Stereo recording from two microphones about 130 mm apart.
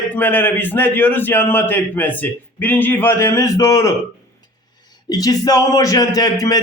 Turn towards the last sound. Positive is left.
turn(degrees=30)  # may be behind; listen again after turning